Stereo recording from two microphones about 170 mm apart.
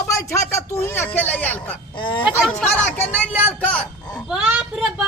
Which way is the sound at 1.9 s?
30° left (ahead or behind).